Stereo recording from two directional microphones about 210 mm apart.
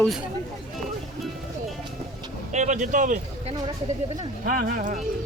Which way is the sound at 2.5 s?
35° right (ahead or behind).